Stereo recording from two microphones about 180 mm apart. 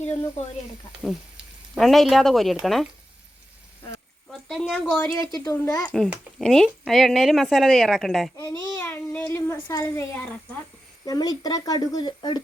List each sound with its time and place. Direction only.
1.0 s speech: centre (ahead or behind)
4.3 s a woman's voice: centre (ahead or behind)
5.2 s a child's voice: 20° left (ahead or behind)
5.8 s a woman's voice: centre (ahead or behind)
8.4 s a child's voice: 15° left (ahead or behind)
11.0 s speech: 20° left (ahead or behind)